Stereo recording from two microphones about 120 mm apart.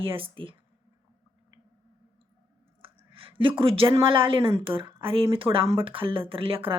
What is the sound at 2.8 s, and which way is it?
Clicking, 50° right (ahead or behind).